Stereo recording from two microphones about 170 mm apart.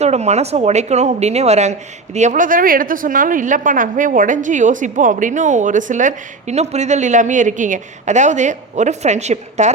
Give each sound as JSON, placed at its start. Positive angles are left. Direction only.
{"t": 0.0, "sound": "a woman's voice", "side_deg": -40}